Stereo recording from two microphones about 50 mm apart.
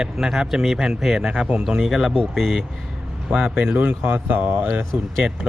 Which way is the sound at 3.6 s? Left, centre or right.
Right.